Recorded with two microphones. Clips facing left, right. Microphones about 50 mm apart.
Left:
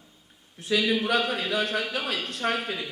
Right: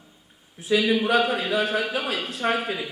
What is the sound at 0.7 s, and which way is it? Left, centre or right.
A man's voice, centre.